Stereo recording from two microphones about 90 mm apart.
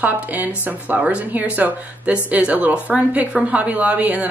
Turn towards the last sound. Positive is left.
turn(degrees=-15)  # may be behind; listen again after turning